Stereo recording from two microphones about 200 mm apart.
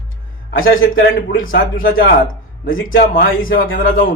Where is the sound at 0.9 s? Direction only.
50° left (ahead or behind).